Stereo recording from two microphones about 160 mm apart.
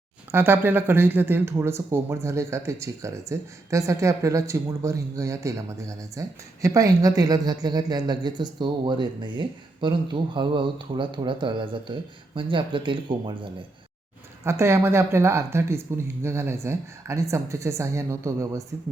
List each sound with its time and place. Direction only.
0.3 s speech: 15° right (ahead or behind); by 13.5 s 30° right (ahead or behind)
14.4 s speech: 15° right (ahead or behind)